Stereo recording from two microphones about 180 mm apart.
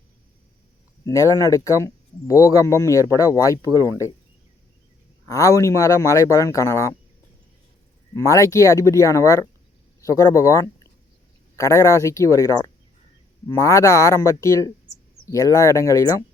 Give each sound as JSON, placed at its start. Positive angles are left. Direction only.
{"t": 1.0, "sound": "speech", "side_deg": 15}
{"t": 5.3, "sound": "speech", "side_deg": 15}
{"t": 8.1, "sound": "speech", "side_deg": 15}